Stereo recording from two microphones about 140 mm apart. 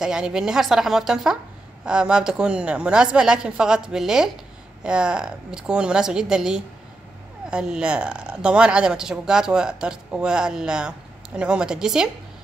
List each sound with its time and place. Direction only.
0.0 s a woman's voice: 5° right (ahead or behind)